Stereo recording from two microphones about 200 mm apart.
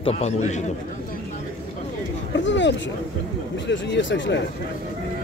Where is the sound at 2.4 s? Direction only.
65° left (ahead or behind).